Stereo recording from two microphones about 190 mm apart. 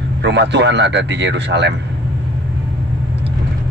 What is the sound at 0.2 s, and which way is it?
A man's voice, 65° right (ahead or behind).